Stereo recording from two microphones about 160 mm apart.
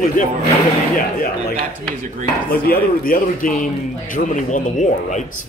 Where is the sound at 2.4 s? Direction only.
65° left (ahead or behind).